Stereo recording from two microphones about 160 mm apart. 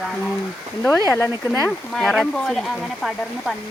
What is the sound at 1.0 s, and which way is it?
Speech, 15° left (ahead or behind).